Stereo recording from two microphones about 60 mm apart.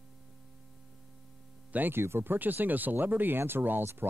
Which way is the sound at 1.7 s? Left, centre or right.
Right.